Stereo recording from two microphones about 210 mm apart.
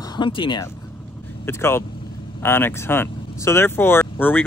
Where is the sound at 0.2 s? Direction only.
25° left (ahead or behind).